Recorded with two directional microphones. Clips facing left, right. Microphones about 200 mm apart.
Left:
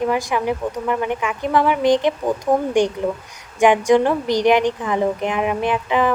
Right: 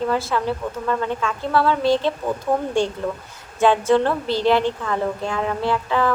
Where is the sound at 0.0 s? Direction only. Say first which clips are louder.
Left 2 dB; 15° left (ahead or behind).